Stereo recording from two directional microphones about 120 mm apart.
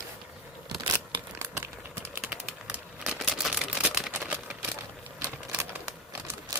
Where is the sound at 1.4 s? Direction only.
20° right (ahead or behind).